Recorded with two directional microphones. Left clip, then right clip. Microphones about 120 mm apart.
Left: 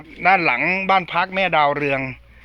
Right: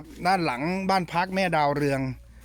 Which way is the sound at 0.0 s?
15° right (ahead or behind).